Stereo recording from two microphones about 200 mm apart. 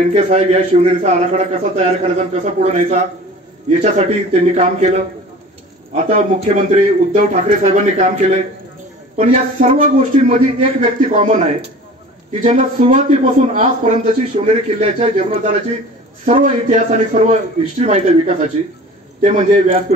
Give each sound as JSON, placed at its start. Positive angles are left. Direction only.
{"t": 0.0, "sound": "speech", "side_deg": -35}
{"t": 6.0, "sound": "speech", "side_deg": -40}